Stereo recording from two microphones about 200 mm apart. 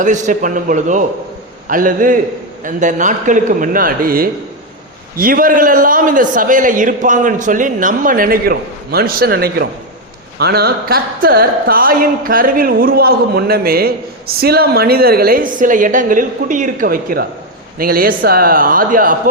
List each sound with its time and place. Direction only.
0.0 s a man's voice: 40° right (ahead or behind)